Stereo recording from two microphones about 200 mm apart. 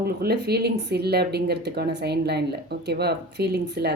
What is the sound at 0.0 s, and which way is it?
Speech, 50° right (ahead or behind).